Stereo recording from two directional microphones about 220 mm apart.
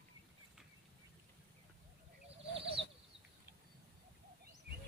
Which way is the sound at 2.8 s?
25° right (ahead or behind).